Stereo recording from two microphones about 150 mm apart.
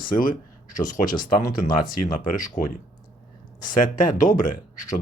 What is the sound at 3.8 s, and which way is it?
Speech, 60° left (ahead or behind).